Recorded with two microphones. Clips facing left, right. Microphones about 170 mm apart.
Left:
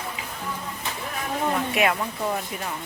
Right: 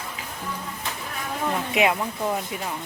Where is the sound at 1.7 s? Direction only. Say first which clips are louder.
Right 1 dB; 15° right (ahead or behind).